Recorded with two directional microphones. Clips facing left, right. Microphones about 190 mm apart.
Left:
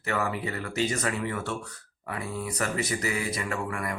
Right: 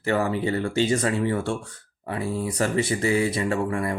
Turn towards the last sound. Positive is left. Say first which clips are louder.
# right 7 dB
turn(degrees=-30)  # may be behind; listen again after turning